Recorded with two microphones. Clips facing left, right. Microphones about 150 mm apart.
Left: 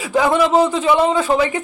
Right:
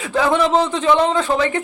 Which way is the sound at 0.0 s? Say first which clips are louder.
Left 1 dB; 10° left (ahead or behind).